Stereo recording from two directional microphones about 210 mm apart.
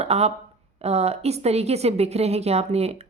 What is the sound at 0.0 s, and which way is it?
A woman's voice, 30° right (ahead or behind).